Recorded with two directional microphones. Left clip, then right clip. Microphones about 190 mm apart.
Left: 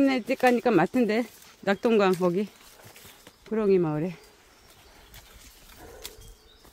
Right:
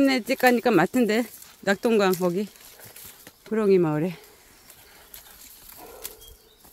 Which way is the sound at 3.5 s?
20° right (ahead or behind).